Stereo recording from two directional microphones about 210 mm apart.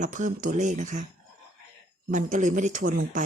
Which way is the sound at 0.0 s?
35° right (ahead or behind).